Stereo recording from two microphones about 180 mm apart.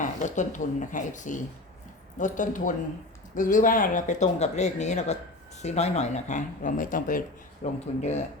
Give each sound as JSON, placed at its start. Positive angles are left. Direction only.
{"t": 0.2, "sound": "speech", "side_deg": 45}